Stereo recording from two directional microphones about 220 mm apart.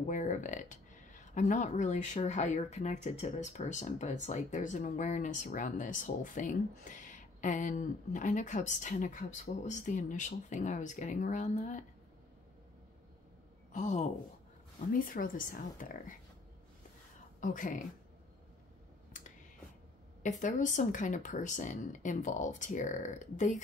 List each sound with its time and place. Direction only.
0.0 s speech: 35° left (ahead or behind)
13.7 s speech: 35° left (ahead or behind)
17.4 s speech: 35° left (ahead or behind)
20.2 s speech: 35° left (ahead or behind)